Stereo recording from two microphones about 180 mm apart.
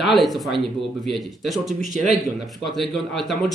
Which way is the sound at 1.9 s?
40° right (ahead or behind).